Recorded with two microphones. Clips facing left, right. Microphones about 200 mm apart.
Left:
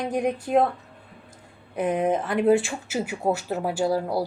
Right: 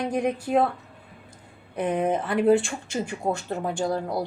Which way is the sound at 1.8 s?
5° left (ahead or behind).